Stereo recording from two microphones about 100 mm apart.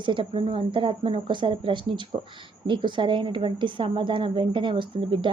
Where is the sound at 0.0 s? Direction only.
60° right (ahead or behind).